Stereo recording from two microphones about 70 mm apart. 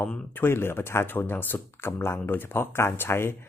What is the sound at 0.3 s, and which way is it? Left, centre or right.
Speech, left.